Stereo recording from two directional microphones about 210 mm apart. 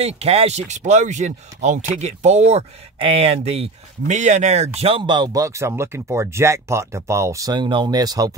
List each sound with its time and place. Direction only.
0.0 s speech: 30° right (ahead or behind)